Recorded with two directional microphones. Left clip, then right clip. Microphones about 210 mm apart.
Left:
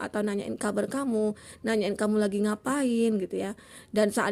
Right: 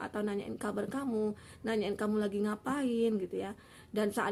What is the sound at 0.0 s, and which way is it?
A woman's voice, 40° left (ahead or behind).